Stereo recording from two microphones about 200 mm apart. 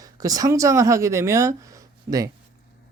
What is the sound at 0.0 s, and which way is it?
Speech, 20° right (ahead or behind).